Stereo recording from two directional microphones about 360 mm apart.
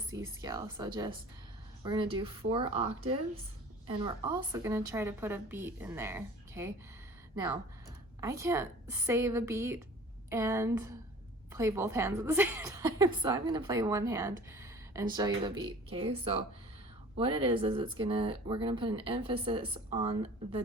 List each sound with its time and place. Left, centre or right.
0.1 s a woman's voice: centre